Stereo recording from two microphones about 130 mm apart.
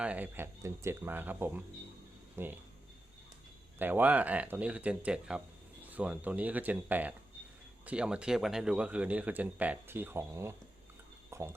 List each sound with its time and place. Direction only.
0.0 s speech: 10° right (ahead or behind)
3.8 s speech: 15° right (ahead or behind)
11.3 s a sound: 20° right (ahead or behind)